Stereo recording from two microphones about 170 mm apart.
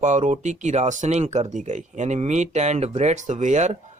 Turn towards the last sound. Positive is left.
turn(degrees=-45)  # may be behind; listen again after turning